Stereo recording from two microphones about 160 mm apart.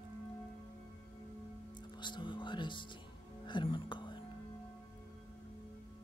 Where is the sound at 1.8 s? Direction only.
30° left (ahead or behind).